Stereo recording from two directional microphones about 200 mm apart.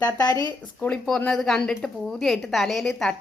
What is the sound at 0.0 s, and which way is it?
Speech, 20° left (ahead or behind).